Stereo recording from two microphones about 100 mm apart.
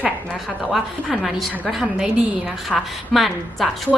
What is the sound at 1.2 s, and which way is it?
A woman's voice, centre (ahead or behind).